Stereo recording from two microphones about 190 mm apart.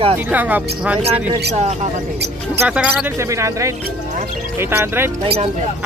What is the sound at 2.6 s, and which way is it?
Speech, 10° right (ahead or behind).